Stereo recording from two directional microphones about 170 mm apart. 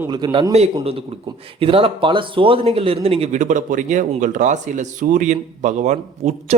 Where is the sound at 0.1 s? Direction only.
25° right (ahead or behind).